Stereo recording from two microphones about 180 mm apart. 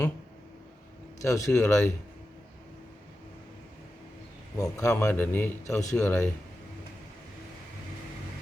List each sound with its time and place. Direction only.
1.2 s speech: 20° left (ahead or behind)
4.5 s speech: 15° left (ahead or behind)